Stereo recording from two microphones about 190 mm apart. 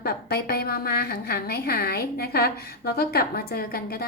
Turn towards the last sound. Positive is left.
turn(degrees=50)  # may be behind; listen again after turning